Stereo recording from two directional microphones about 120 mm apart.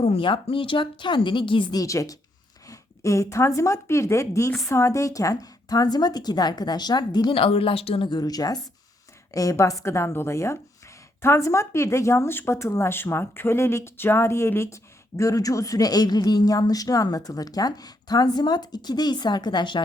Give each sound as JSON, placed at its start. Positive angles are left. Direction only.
{"t": 0.0, "sound": "a woman's voice", "side_deg": 45}
{"t": 1.8, "sound": "speech", "side_deg": 30}